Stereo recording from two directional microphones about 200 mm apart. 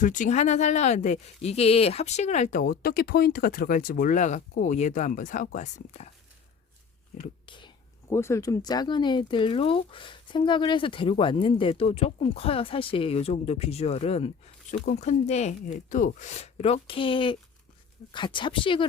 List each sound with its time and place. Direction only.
0.0 s speech: 40° left (ahead or behind)
7.4 s whispering: 25° left (ahead or behind)
8.1 s speech: 15° left (ahead or behind)